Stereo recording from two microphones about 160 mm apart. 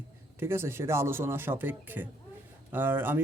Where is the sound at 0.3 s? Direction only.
15° right (ahead or behind).